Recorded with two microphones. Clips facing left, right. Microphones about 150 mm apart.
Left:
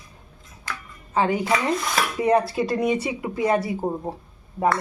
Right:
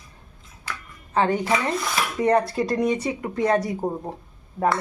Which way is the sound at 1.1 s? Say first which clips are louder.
Even; 10° left (ahead or behind).